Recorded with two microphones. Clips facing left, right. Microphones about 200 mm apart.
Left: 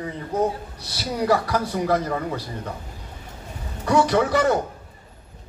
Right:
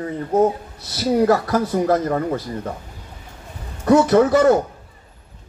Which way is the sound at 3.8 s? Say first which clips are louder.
Right 6 dB; 45° right (ahead or behind).